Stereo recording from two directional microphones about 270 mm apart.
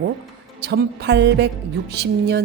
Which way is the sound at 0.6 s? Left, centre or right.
Right.